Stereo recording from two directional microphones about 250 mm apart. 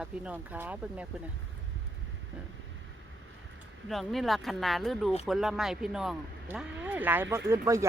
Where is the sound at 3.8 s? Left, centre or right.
Centre.